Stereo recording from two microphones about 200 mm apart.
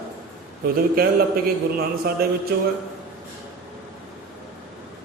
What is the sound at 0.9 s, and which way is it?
A man's voice, 50° right (ahead or behind).